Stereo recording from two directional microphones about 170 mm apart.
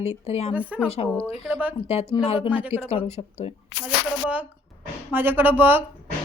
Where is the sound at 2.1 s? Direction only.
35° left (ahead or behind).